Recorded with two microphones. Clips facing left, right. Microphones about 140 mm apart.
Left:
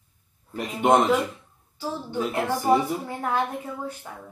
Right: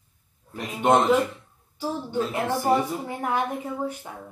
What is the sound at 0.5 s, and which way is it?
Speech, 10° left (ahead or behind).